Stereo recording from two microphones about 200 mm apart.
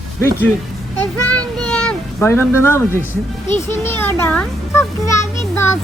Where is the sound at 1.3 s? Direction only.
5° left (ahead or behind).